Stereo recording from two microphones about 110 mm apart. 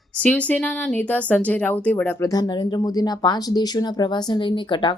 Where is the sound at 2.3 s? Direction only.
40° left (ahead or behind).